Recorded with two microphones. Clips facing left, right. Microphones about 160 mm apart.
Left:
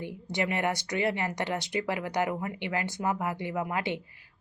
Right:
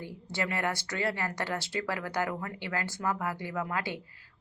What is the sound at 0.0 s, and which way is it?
Speech, 20° left (ahead or behind).